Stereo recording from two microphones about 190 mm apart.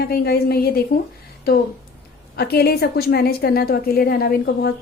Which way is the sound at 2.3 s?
55° left (ahead or behind).